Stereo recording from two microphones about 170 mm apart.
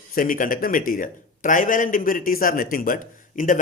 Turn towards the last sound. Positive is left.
turn(degrees=50)  # may be behind; listen again after turning